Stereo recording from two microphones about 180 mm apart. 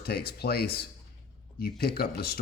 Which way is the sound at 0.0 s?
60° left (ahead or behind).